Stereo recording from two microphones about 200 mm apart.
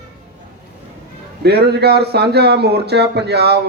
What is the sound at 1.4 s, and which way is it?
Speech, 55° right (ahead or behind).